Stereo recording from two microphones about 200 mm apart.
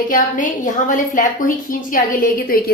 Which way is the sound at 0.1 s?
40° left (ahead or behind).